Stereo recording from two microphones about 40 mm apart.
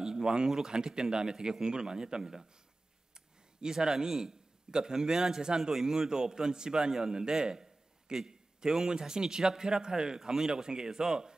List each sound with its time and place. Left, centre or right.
0.0 s a sound: centre
0.5 s a man's voice: centre
3.6 s a man's voice: centre